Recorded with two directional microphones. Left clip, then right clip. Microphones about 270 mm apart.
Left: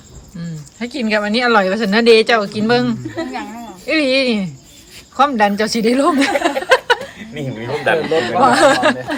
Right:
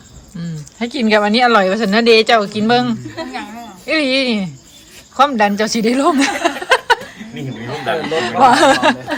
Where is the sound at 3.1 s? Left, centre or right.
Left.